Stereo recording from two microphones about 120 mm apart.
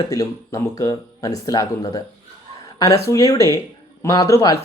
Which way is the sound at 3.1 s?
30° left (ahead or behind).